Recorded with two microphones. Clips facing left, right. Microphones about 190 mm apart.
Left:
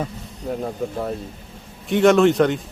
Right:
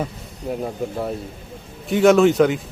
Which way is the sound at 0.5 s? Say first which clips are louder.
Even; 5° right (ahead or behind).